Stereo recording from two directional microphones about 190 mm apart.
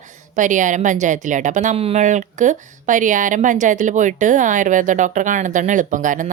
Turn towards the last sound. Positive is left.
turn(degrees=-45)  # may be behind; listen again after turning